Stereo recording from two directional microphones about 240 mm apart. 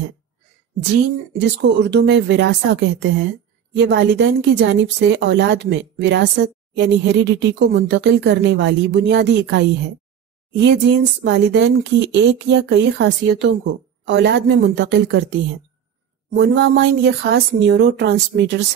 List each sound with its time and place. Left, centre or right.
1.3 s speech: right
16.3 s speech: right